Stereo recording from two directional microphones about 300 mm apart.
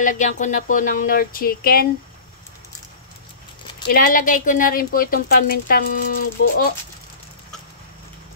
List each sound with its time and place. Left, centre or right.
0.0 s speech: left
3.9 s speech: left